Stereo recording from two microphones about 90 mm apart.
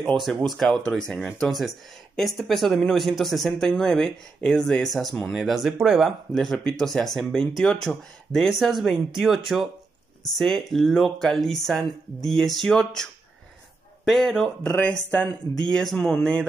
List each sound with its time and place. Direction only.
0.0 s speech: 5° left (ahead or behind)
14.8 s speech: 15° left (ahead or behind)
15.7 s speech: 5° left (ahead or behind)